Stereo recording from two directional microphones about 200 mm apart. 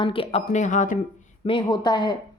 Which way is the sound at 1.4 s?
25° left (ahead or behind).